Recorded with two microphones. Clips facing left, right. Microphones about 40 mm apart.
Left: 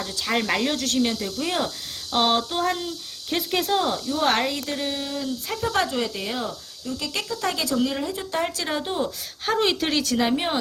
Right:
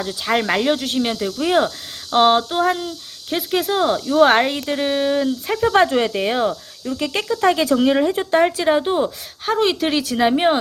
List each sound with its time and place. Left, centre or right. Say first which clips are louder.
0.0 s speech: right 5 dB; centre
3.8 s speech: right 9 dB; right
7.9 s speech: right 11 dB; right
8.4 s speech: right 10 dB; right
9.5 s speech: right 4 dB; centre; by 10.6 s right